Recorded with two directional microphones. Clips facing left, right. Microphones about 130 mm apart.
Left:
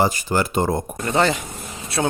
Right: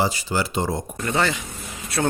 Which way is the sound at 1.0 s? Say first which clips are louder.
Left 3 dB; 30° left (ahead or behind).